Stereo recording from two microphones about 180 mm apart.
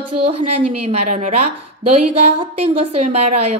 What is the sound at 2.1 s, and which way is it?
A woman's voice, 30° right (ahead or behind).